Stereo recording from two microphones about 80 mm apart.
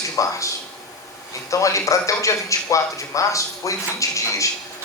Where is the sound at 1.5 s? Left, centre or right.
Left.